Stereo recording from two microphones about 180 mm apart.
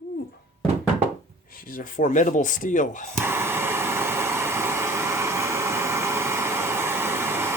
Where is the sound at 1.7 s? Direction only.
50° left (ahead or behind).